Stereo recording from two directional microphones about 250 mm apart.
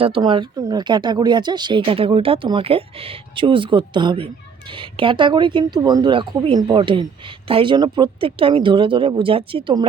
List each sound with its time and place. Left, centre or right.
0.0 s speech: centre